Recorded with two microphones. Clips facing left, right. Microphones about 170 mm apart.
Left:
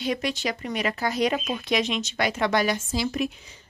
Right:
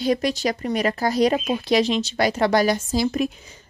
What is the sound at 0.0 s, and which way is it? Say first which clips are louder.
Speech: right 6 dB; 40° right (ahead or behind).